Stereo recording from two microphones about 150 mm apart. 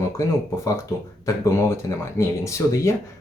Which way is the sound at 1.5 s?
20° left (ahead or behind).